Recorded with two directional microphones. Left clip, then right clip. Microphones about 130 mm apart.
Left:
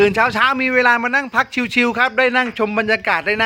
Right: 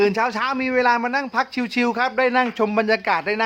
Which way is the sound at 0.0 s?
25° left (ahead or behind).